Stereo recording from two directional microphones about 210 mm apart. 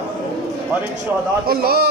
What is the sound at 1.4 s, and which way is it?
Speech, 45° right (ahead or behind).